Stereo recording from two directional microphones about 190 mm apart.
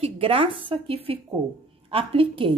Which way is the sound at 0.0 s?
30° right (ahead or behind).